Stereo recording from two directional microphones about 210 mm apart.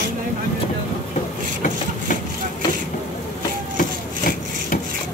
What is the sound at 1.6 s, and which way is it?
Engine, 40° left (ahead or behind).